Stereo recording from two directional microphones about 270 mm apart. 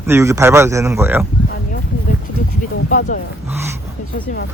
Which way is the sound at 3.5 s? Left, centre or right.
Centre.